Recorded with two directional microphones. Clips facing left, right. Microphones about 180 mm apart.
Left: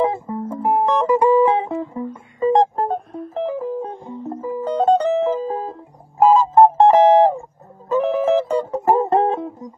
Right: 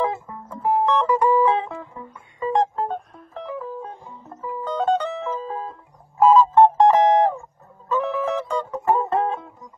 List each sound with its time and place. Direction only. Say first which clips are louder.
0.0 s music: left 5 dB; 25° left (ahead or behind)
4.2 s music: left 7 dB; 40° left (ahead or behind)
9.3 s music: left 7 dB; 40° left (ahead or behind)